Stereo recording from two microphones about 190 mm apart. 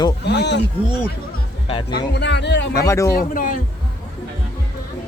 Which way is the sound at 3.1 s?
45° left (ahead or behind).